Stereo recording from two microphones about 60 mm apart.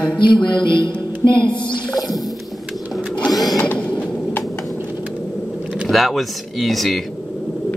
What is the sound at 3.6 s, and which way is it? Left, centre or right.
Train, left.